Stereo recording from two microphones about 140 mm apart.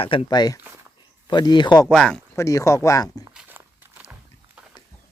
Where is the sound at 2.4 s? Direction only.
20° left (ahead or behind).